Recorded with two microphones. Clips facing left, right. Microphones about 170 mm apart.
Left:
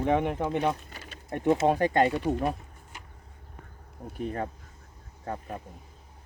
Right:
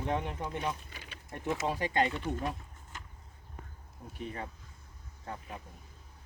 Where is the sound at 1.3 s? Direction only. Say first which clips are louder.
Left 10 dB; 60° left (ahead or behind).